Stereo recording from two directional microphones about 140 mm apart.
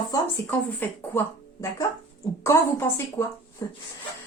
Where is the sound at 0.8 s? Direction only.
15° left (ahead or behind).